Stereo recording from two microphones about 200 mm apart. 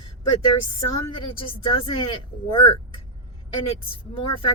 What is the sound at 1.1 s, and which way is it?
Speech, 25° left (ahead or behind).